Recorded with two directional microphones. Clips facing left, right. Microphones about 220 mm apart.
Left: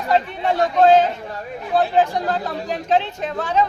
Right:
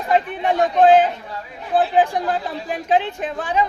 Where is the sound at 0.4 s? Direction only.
15° right (ahead or behind).